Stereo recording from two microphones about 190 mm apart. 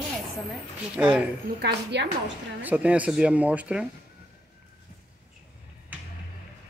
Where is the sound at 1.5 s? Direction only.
60° right (ahead or behind).